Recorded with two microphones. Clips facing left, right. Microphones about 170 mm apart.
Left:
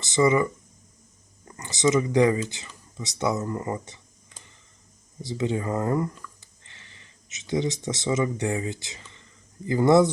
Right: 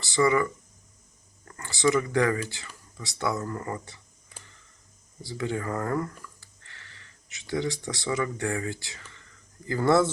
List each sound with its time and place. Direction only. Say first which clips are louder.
0.0 s speech: left 2 dB; 20° left (ahead or behind)